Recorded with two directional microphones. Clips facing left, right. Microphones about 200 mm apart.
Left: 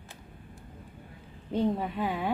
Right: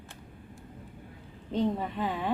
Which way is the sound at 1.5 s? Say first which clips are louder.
Left 1 dB; 10° left (ahead or behind).